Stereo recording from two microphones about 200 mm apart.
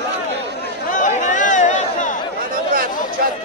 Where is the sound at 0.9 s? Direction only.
40° left (ahead or behind).